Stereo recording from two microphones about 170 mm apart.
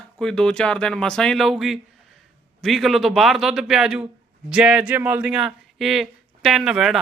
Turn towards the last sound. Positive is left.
turn(degrees=0)  # may be behind; listen again after turning